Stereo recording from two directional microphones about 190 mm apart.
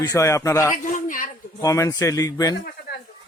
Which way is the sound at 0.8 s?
45° left (ahead or behind).